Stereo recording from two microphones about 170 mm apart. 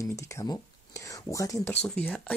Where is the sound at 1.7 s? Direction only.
10° left (ahead or behind).